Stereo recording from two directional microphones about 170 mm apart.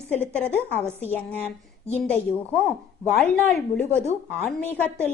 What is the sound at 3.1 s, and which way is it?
A woman's voice, 5° left (ahead or behind).